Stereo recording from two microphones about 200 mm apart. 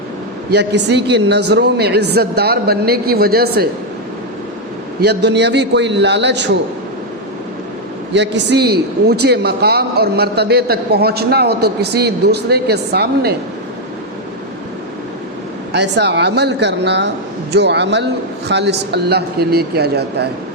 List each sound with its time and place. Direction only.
0.5 s a man's voice: 55° right (ahead or behind)
4.9 s a man's voice: 55° right (ahead or behind)
8.1 s a man's voice: 60° right (ahead or behind)
15.7 s a man's voice: 60° right (ahead or behind)